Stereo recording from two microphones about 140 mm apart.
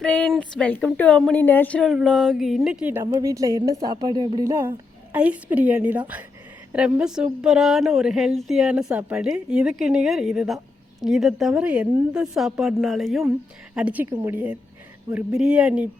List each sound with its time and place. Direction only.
0.0 s speech: 5° left (ahead or behind)
1.9 s a woman's voice: centre (ahead or behind)
3.1 s a woman's voice: 25° right (ahead or behind)
5.1 s a woman's voice: 10° right (ahead or behind)